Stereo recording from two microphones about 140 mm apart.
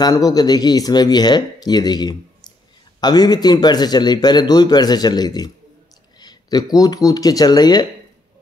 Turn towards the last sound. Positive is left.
turn(degrees=30)  # may be behind; listen again after turning